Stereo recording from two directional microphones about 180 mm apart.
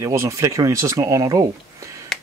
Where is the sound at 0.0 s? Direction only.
15° right (ahead or behind).